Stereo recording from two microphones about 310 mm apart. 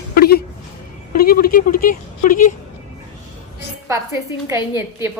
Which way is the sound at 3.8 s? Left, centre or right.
Centre.